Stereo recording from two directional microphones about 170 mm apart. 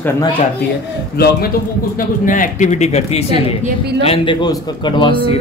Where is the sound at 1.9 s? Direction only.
50° left (ahead or behind).